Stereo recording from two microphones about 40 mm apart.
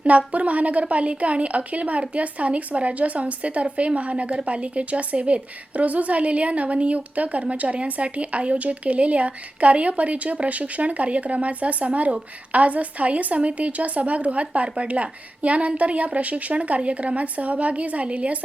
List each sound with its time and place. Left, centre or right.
0.0 s a woman's voice: right